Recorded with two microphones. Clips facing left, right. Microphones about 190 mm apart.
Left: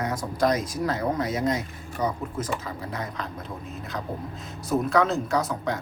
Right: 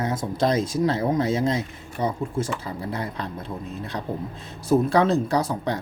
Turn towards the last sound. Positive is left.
turn(degrees=-30)  # may be behind; listen again after turning